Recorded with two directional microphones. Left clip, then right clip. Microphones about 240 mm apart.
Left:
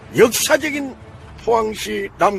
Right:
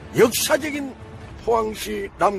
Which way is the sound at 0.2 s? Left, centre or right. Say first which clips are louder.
Left 4 dB; centre.